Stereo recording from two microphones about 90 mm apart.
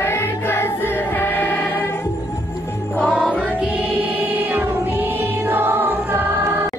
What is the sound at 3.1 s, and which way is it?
Music, 10° right (ahead or behind).